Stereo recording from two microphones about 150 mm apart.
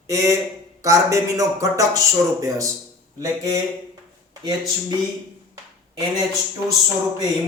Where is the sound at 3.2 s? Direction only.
20° right (ahead or behind).